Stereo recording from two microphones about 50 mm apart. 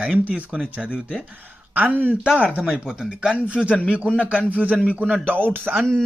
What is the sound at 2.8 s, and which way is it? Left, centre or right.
Speech, centre.